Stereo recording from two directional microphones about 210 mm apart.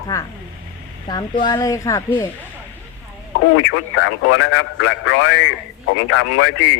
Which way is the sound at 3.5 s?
75° left (ahead or behind).